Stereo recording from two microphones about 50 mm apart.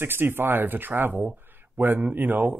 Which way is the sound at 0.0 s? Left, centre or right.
Right.